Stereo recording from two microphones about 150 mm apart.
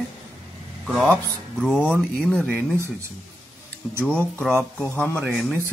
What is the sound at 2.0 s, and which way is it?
Speech, 5° left (ahead or behind).